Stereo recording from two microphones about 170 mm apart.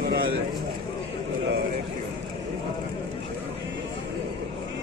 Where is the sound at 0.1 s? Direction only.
70° right (ahead or behind).